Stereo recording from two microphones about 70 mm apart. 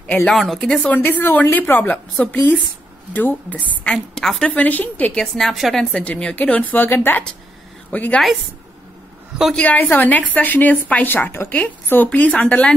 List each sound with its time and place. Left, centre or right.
0.3 s a woman's voice: centre
0.8 s a woman's voice: left; by 4.6 s centre
4.6 s a woman's voice: left
5.2 s a woman's voice: centre
5.9 s a woman's voice: centre
9.6 s a woman's voice: left